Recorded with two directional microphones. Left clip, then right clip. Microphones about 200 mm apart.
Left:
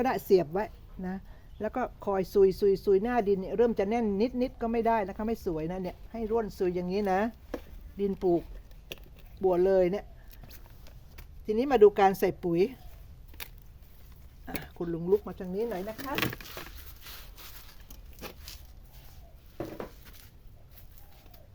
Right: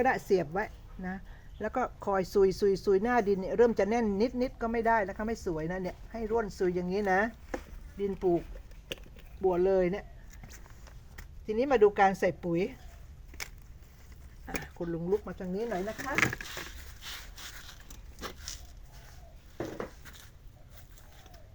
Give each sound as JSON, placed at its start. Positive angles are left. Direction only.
{"t": 0.0, "sound": "speech", "side_deg": 40}
{"t": 1.5, "sound": "speech", "side_deg": 25}
{"t": 11.4, "sound": "speech", "side_deg": 50}
{"t": 14.8, "sound": "speech", "side_deg": 45}